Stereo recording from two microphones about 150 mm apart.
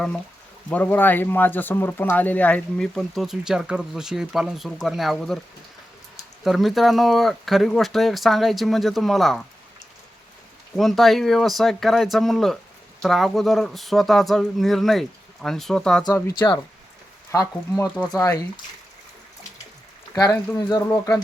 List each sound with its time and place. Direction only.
0.7 s speech: 10° left (ahead or behind)
6.4 s speech: centre (ahead or behind)
10.8 s speech: centre (ahead or behind)
16.0 s speech: 25° left (ahead or behind)
17.9 s speech: centre (ahead or behind)
18.2 s speech: 25° left (ahead or behind)
20.1 s speech: 25° left (ahead or behind)